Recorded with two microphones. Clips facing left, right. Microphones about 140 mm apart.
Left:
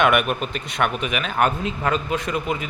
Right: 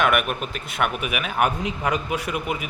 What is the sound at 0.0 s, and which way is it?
Speech, centre (ahead or behind).